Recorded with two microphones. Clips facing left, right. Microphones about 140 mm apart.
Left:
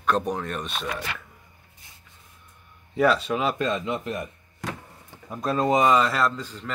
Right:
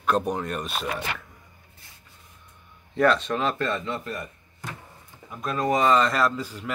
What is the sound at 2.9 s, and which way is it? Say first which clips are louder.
A man's voice: even; 5° left (ahead or behind).